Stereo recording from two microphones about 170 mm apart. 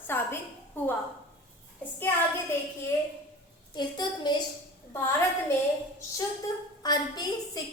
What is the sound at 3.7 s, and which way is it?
Speech, 25° left (ahead or behind).